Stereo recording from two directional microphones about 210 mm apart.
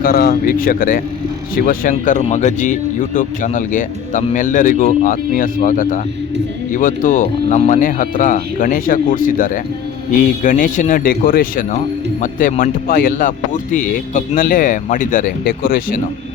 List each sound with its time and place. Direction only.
0.0 s speech: 45° left (ahead or behind)